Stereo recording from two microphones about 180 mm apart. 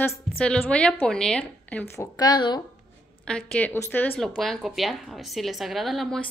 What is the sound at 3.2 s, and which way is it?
A woman's voice, 5° left (ahead or behind).